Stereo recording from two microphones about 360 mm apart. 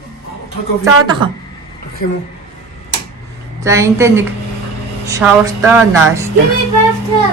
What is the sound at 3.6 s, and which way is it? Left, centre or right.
A woman's voice, centre.